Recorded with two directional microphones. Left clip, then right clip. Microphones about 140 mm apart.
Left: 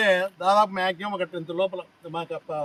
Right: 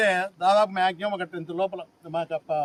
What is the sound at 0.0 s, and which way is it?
Speech, 35° right (ahead or behind).